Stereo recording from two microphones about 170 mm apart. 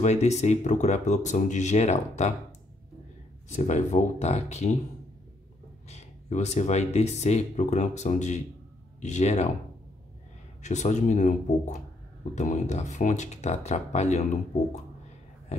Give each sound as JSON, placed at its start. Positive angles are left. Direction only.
{"t": 0.0, "sound": "speech", "side_deg": 40}
{"t": 3.4, "sound": "speech", "side_deg": 45}
{"t": 5.9, "sound": "speech", "side_deg": 40}
{"t": 10.6, "sound": "speech", "side_deg": 45}